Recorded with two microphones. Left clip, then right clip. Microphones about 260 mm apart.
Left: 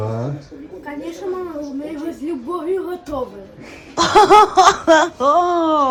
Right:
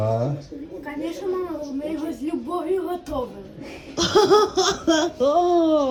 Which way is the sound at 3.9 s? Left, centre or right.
Centre.